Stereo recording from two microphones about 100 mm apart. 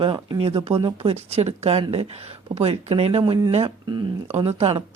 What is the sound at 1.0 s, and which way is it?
Speech, 90° right.